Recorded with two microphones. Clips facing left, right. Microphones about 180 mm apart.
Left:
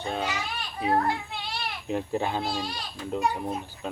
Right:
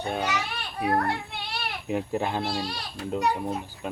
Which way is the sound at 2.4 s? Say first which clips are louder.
Right 1 dB; 65° right (ahead or behind).